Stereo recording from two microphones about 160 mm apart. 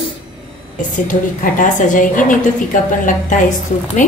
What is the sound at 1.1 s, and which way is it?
A woman's voice, 55° left (ahead or behind).